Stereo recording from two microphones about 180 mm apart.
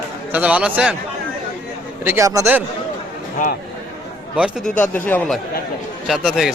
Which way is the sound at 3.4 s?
45° left (ahead or behind).